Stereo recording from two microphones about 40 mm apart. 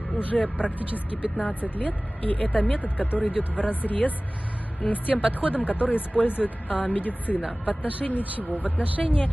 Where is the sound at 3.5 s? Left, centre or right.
Left.